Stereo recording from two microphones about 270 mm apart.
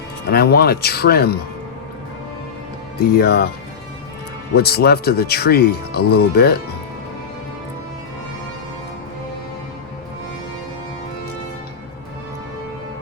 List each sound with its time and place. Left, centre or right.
0.3 s speech: left
3.2 s speech: left
4.5 s speech: left